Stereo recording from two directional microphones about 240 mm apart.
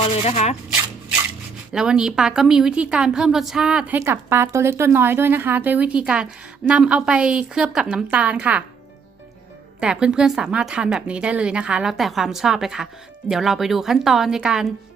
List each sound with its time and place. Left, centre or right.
0.0 s speech: left
1.7 s a woman's voice: centre
9.8 s a woman's voice: centre